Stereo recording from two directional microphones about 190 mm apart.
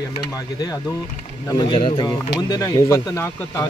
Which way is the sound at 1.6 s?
25° left (ahead or behind).